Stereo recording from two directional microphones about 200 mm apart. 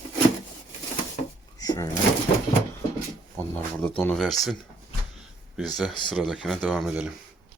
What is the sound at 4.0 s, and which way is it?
Speech, 5° left (ahead or behind).